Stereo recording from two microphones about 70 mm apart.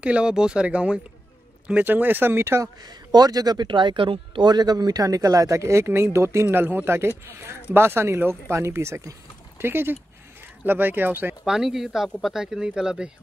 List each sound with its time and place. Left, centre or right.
0.0 s speech: centre; by 2.6 s right
2.6 s speech: right
11.4 s speech: centre